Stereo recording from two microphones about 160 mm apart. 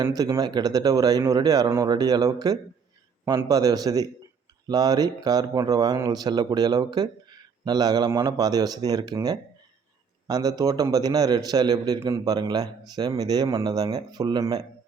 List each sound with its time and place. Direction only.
0.0 s speech: 25° right (ahead or behind)